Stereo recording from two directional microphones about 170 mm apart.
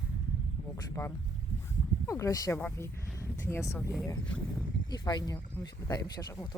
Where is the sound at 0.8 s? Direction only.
20° left (ahead or behind).